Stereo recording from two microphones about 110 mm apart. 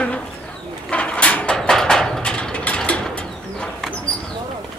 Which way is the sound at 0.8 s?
10° left (ahead or behind).